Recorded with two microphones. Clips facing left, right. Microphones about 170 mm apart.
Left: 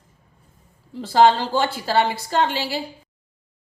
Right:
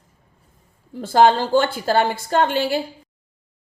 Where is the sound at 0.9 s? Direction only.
50° right (ahead or behind).